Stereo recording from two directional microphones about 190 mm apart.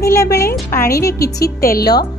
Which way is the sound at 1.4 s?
55° left (ahead or behind).